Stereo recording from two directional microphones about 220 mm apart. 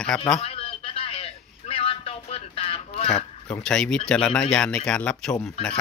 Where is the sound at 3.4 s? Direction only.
5° left (ahead or behind).